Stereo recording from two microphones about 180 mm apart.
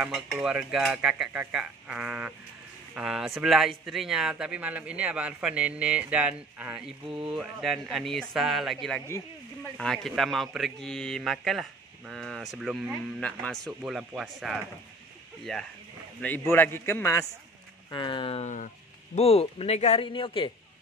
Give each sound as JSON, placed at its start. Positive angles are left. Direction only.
{"t": 0.0, "sound": "a man's voice", "side_deg": -5}